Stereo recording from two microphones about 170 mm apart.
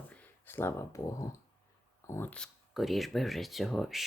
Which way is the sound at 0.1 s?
10° left (ahead or behind).